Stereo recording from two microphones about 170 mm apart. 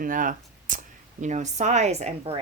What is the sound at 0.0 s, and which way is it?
Speech, 55° right (ahead or behind).